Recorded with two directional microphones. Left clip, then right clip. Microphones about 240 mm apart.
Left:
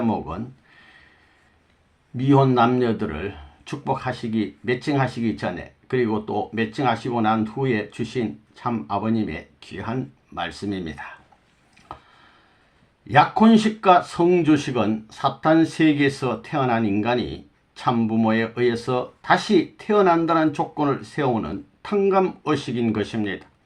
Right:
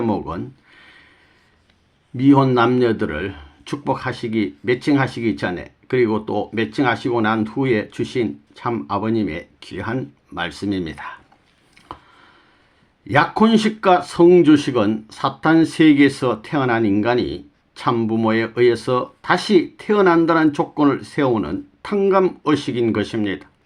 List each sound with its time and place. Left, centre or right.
0.0 s speech: right
2.1 s speech: right
13.1 s speech: right